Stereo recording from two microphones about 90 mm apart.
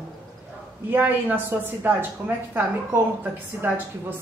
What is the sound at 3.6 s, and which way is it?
Speech, 20° right (ahead or behind).